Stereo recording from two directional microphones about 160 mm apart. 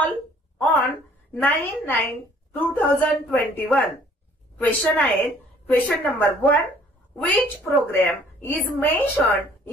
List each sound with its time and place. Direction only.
0.6 s a woman's voice: 10° left (ahead or behind)